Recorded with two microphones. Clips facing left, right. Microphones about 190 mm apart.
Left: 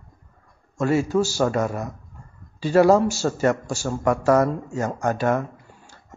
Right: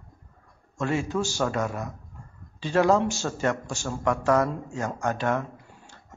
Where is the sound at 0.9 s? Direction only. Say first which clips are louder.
Left 7 dB; 40° left (ahead or behind).